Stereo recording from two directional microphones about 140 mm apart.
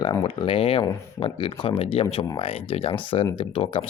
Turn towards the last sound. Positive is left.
turn(degrees=40)  # may be behind; listen again after turning